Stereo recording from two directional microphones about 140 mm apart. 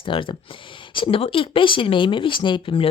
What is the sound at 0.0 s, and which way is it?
Speech, 35° left (ahead or behind).